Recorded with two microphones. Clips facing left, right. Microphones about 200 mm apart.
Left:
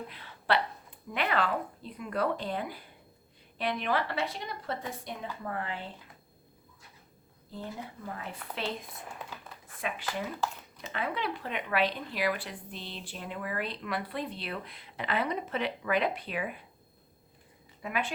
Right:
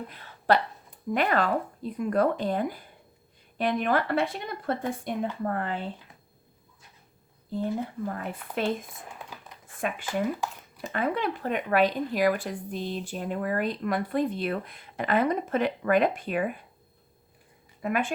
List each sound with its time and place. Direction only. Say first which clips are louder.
0.1 s speech: right 6 dB; 45° right (ahead or behind)
8.0 s speech: right 7 dB; 50° right (ahead or behind)
9.7 s speech: right 5 dB; 50° right (ahead or behind)
10.4 s speech: even; 15° right (ahead or behind)
10.8 s speech: right 6 dB; 50° right (ahead or behind)
17.8 s speech: right 6 dB; 50° right (ahead or behind)